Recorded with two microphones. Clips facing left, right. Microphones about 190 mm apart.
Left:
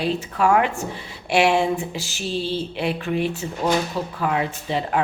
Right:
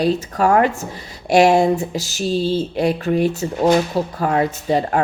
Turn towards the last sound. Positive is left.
turn(degrees=-40)  # may be behind; listen again after turning